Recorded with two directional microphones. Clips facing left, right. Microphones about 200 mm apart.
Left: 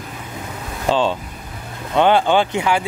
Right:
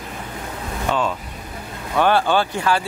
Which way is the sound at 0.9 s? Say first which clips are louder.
Left 5 dB; 30° left (ahead or behind).